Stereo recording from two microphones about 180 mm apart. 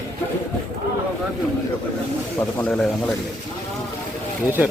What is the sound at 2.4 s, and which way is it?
Speech, 10° left (ahead or behind).